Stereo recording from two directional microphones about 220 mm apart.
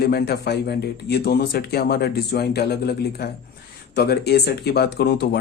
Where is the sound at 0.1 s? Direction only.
45° left (ahead or behind).